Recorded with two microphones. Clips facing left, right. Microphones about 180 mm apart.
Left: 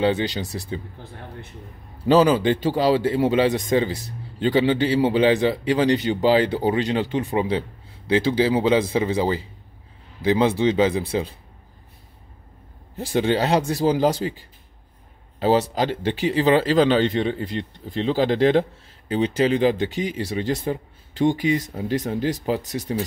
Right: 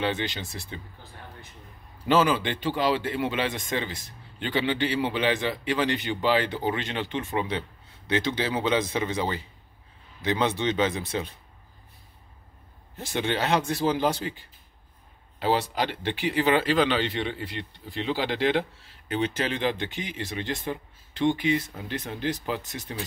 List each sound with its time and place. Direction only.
0.2 s speech: 35° left (ahead or behind)
2.0 s speech: 35° left (ahead or behind)
12.9 s speech: 35° left (ahead or behind)